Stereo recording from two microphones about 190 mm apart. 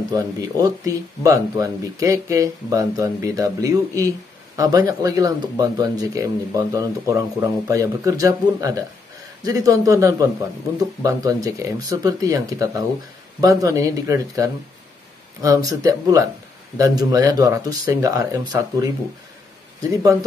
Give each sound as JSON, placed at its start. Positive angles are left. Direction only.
{"t": 0.6, "sound": "speech", "side_deg": -20}